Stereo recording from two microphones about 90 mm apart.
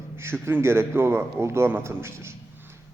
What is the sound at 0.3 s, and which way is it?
A man's voice, 30° right (ahead or behind).